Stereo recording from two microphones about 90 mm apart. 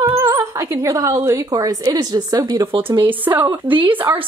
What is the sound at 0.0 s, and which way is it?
A woman's voice, 40° right (ahead or behind).